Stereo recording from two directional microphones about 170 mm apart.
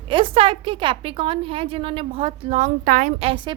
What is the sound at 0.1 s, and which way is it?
A woman's voice, 30° right (ahead or behind).